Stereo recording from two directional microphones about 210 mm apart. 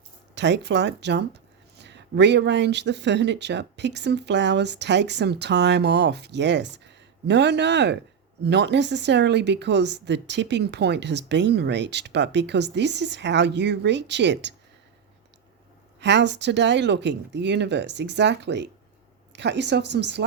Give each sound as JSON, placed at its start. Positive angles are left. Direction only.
{"t": 0.3, "sound": "speech", "side_deg": -55}
{"t": 16.0, "sound": "speech", "side_deg": -55}